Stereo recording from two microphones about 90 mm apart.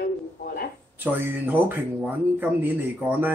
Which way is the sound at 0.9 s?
20° right (ahead or behind).